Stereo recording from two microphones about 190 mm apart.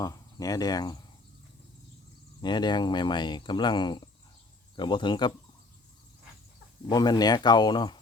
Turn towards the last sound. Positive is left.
turn(degrees=25)  # may be behind; listen again after turning